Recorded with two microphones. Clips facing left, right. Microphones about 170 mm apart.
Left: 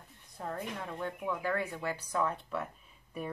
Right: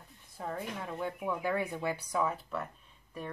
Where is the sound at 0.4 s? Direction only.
Centre (ahead or behind).